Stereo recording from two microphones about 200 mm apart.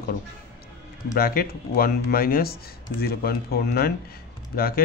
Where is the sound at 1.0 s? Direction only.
45° left (ahead or behind).